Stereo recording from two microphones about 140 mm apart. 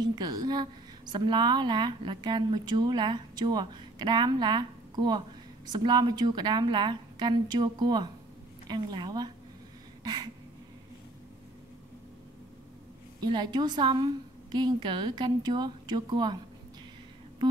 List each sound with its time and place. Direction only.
0.0 s a woman's voice: 30° right (ahead or behind)
10.0 s a sound: 30° right (ahead or behind)
13.2 s a woman's voice: 30° right (ahead or behind)